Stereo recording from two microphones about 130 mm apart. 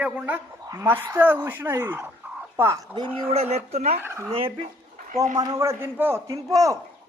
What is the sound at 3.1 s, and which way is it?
Speech, 50° right (ahead or behind).